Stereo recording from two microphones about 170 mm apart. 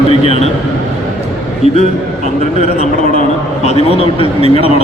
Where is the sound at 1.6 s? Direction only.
40° left (ahead or behind).